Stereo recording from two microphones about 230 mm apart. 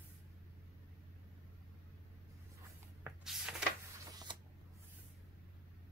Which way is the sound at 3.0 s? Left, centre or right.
Centre.